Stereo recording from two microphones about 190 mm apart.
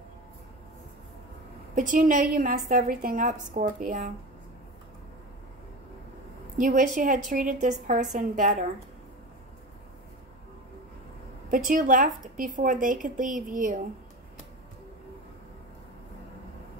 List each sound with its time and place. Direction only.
1.8 s a woman's voice: 45° right (ahead or behind)
6.6 s a woman's voice: 45° right (ahead or behind)
11.7 s a woman's voice: 45° right (ahead or behind)